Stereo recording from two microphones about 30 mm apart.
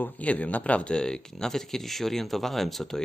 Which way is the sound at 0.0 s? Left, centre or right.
Left.